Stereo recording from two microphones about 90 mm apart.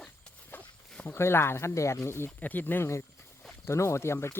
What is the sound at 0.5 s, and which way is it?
Speech, 20° left (ahead or behind).